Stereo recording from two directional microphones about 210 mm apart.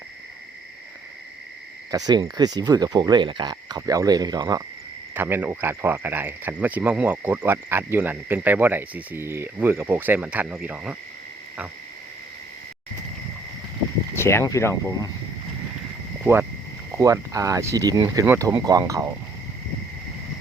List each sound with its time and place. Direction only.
1.9 s speech: 20° right (ahead or behind)
14.2 s speech: 10° left (ahead or behind)
16.2 s speech: 10° right (ahead or behind)